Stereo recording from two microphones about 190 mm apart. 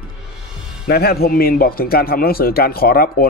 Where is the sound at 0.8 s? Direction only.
55° left (ahead or behind).